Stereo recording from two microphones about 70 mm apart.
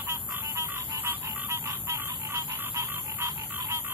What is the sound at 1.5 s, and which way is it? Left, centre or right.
Chicken, right.